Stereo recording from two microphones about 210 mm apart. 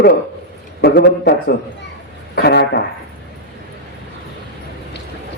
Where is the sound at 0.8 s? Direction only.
50° left (ahead or behind).